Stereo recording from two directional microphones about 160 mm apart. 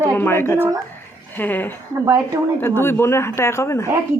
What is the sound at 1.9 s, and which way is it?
Speech, 20° right (ahead or behind).